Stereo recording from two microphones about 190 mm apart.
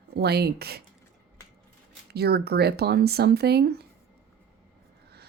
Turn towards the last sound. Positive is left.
turn(degrees=-55)  # may be behind; listen again after turning